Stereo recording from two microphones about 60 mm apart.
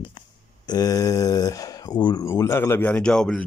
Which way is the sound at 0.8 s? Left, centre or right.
Left.